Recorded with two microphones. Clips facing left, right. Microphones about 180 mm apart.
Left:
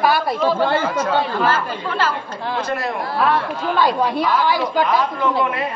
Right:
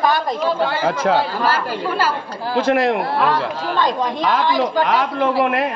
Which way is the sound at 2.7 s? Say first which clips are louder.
Right 11 dB; 90° right.